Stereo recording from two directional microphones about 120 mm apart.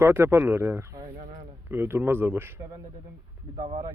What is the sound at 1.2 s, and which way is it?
Speech, 90° right.